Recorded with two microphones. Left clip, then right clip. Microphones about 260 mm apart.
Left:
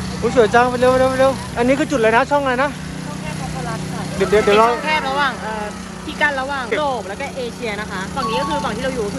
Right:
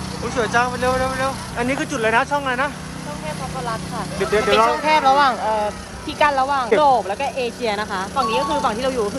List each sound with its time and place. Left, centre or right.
0.4 s speech: centre
4.2 s speech: centre
4.8 s speech: right
6.1 s speech: right